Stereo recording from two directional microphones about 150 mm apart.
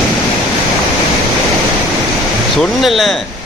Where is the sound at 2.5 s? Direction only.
Centre (ahead or behind).